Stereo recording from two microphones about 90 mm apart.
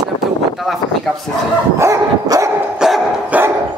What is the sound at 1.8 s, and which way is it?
Dog, 35° right (ahead or behind).